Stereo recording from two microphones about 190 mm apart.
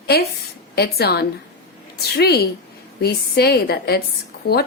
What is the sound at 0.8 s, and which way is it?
A woman's voice, 55° left (ahead or behind).